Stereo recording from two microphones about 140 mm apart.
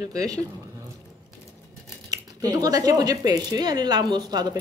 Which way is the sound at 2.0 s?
25° right (ahead or behind).